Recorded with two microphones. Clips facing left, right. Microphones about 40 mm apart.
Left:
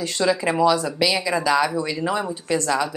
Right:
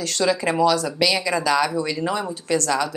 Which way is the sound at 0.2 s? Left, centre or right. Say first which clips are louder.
Even; centre.